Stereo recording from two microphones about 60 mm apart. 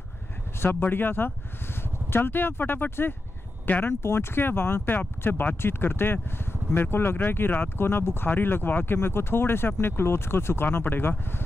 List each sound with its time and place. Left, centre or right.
0.6 s speech: left
4.0 s speech: left